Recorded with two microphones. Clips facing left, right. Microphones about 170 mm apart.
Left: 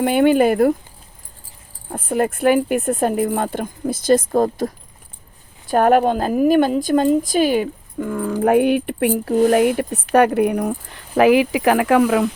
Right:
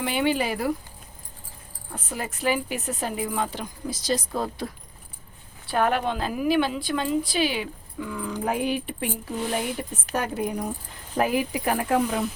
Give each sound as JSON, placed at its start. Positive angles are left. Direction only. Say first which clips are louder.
{"t": 0.0, "sound": "speech", "louder": "left 10 dB", "side_deg": 50}
{"t": 1.9, "sound": "speech", "louder": "left 13 dB", "side_deg": 55}